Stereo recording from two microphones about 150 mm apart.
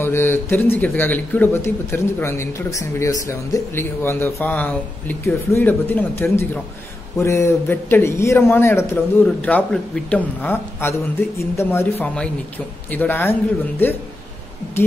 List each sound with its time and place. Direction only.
0.0 s a man's voice: 15° left (ahead or behind)